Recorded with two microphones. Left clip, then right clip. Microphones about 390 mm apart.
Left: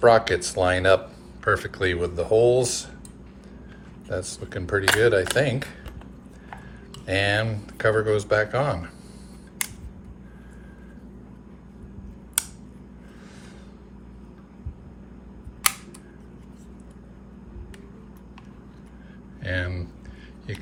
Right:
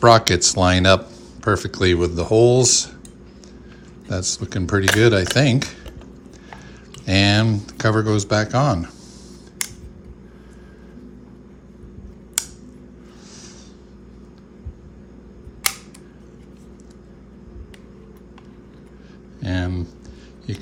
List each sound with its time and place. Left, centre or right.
0.1 s speech: centre
4.1 s speech: centre
7.0 s speech: centre
19.4 s a sound: centre